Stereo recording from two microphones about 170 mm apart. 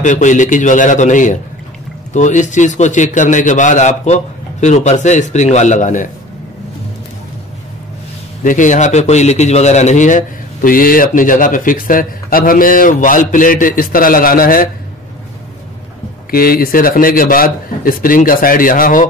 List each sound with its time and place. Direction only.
0.0 s a man's voice: 45° left (ahead or behind)
8.5 s a man's voice: 50° left (ahead or behind)
16.3 s a man's voice: 60° left (ahead or behind)